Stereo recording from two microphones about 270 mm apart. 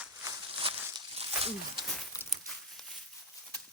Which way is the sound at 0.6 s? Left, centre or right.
Right.